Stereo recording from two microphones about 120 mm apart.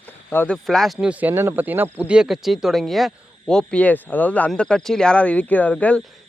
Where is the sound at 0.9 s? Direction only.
10° right (ahead or behind); by 6.0 s 10° left (ahead or behind).